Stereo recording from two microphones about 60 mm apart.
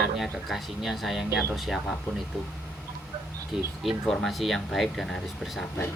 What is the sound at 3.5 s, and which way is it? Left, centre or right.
Speech, centre.